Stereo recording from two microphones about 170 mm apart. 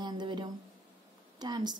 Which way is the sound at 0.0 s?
25° right (ahead or behind).